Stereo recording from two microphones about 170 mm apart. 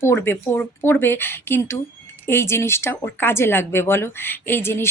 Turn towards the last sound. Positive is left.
turn(degrees=15)  # may be behind; listen again after turning